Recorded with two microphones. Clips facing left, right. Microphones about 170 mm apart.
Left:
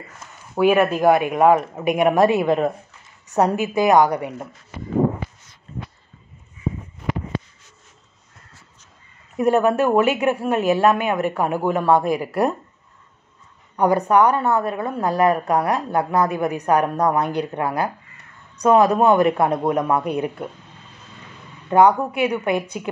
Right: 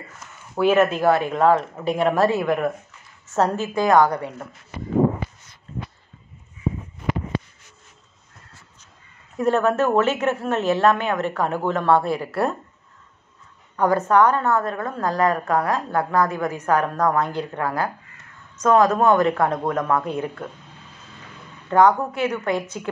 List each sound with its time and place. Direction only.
0.6 s a woman's voice: 10° left (ahead or behind)
9.4 s a woman's voice: 15° left (ahead or behind)
13.7 s a woman's voice: 15° left (ahead or behind)
21.6 s a woman's voice: 15° left (ahead or behind)